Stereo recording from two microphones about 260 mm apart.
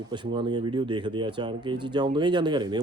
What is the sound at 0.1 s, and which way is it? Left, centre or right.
Speech, centre.